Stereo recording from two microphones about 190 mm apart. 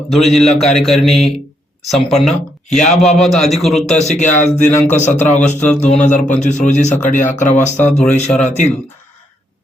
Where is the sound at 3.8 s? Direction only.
35° left (ahead or behind).